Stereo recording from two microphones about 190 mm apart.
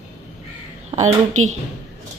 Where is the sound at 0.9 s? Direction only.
35° right (ahead or behind).